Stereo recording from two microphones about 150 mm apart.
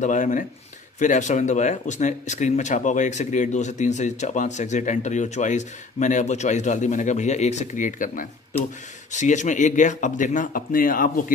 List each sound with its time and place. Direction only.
0.0 s speech: 60° left (ahead or behind)